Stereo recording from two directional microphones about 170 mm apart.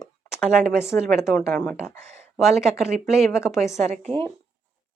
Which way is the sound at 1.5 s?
5° left (ahead or behind).